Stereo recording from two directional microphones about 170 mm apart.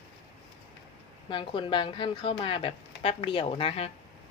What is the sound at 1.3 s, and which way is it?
A woman's voice, 30° left (ahead or behind).